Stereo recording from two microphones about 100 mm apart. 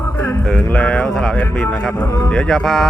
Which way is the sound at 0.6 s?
10° left (ahead or behind).